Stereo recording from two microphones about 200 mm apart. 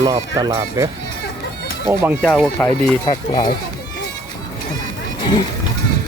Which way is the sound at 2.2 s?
5° left (ahead or behind).